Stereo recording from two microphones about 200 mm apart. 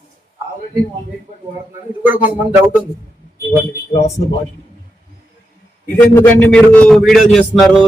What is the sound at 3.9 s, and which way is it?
Speech, 35° left (ahead or behind).